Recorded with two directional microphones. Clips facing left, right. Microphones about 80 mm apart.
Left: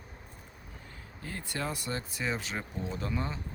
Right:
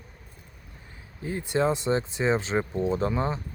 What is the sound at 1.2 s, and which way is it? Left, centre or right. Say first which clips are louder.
Speech: right 11 dB; centre.